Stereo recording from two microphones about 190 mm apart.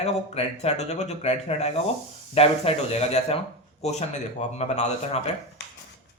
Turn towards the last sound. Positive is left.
turn(degrees=35)  # may be behind; listen again after turning